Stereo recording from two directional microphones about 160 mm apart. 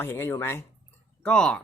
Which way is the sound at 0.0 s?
15° left (ahead or behind).